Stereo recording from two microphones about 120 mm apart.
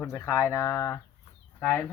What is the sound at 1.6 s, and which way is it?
Speech, 15° left (ahead or behind).